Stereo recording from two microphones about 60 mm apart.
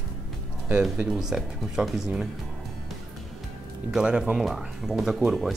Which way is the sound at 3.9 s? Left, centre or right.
Centre.